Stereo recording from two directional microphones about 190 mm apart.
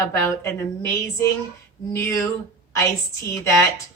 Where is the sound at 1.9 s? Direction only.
15° left (ahead or behind).